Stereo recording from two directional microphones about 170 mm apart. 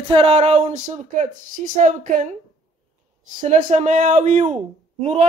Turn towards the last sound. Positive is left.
turn(degrees=-40)  # may be behind; listen again after turning